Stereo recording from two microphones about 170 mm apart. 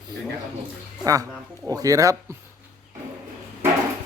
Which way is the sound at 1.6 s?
20° right (ahead or behind).